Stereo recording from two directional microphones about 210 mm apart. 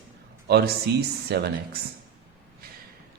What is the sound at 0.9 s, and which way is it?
Speech, 50° right (ahead or behind).